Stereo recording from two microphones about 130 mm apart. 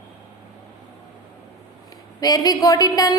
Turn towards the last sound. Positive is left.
turn(degrees=30)  # may be behind; listen again after turning